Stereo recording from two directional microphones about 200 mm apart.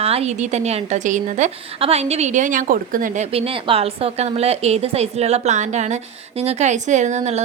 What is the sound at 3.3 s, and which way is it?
A woman's voice, 30° right (ahead or behind).